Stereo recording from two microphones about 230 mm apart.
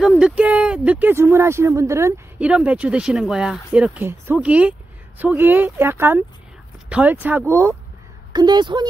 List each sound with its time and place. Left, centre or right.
0.0 s speech: centre